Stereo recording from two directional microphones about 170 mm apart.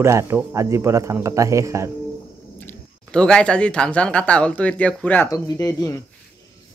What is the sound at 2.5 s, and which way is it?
Speech, 5° left (ahead or behind).